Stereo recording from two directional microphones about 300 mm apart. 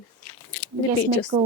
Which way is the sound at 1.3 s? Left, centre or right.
Right.